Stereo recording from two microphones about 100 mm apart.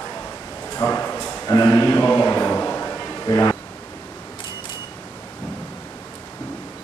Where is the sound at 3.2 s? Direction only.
35° left (ahead or behind).